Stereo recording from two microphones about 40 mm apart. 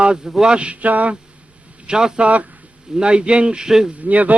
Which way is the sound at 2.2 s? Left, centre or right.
Right.